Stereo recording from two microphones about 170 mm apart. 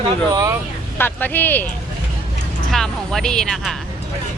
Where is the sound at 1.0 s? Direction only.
10° left (ahead or behind).